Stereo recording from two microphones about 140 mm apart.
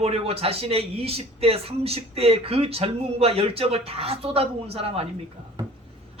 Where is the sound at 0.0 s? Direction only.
45° right (ahead or behind).